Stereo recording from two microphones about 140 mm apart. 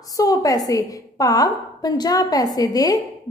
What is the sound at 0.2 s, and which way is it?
A woman's voice, 25° left (ahead or behind).